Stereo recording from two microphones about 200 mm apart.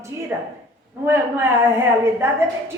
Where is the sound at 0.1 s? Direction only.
15° right (ahead or behind).